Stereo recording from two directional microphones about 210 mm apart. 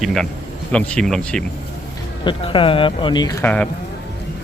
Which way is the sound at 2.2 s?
25° left (ahead or behind).